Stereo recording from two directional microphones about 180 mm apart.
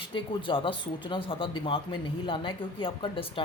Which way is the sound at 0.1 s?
30° left (ahead or behind).